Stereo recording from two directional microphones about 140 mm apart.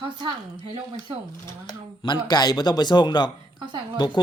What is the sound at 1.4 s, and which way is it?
Speech, 30° left (ahead or behind).